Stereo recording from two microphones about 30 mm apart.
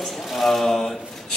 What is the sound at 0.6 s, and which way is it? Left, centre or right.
Speech, centre.